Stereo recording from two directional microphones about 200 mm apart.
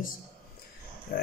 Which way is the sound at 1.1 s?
45° left (ahead or behind).